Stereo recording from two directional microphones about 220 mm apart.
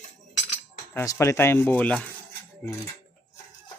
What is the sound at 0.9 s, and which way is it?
Speech, 15° left (ahead or behind).